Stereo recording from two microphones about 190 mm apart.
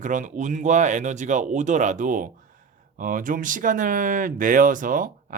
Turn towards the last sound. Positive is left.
turn(degrees=-45)  # may be behind; listen again after turning